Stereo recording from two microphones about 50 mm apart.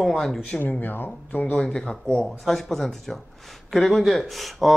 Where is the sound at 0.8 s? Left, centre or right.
Left.